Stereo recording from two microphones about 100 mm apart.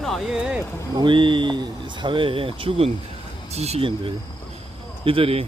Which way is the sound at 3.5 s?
90° right.